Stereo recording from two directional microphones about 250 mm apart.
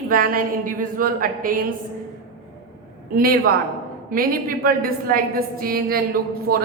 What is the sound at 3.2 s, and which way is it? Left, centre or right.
A woman's voice, right.